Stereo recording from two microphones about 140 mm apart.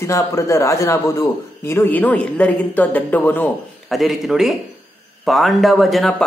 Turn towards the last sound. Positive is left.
turn(degrees=0)  # may be behind; listen again after turning